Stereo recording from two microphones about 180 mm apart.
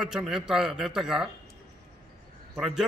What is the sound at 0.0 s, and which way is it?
A man's voice, 5° right (ahead or behind).